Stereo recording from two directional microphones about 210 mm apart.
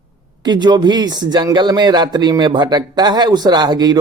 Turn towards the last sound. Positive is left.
turn(degrees=-20)  # may be behind; listen again after turning